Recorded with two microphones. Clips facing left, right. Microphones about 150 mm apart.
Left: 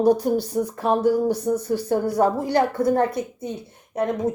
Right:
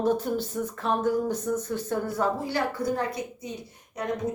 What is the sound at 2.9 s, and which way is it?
A woman's voice, 60° left (ahead or behind).